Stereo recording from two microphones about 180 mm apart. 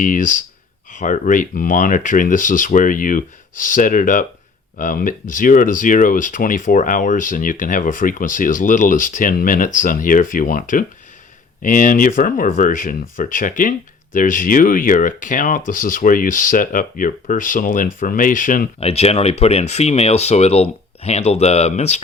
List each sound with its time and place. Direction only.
0.0 s speech: 45° left (ahead or behind)
18.8 s speech: 35° left (ahead or behind)